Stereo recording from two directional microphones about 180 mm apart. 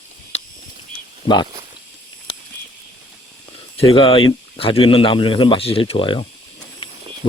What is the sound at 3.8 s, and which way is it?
Speech, 30° left (ahead or behind).